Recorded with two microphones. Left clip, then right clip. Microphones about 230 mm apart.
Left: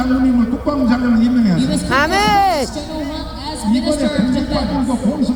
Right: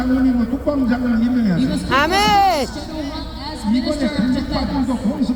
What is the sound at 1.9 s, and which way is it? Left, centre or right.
Speech, centre.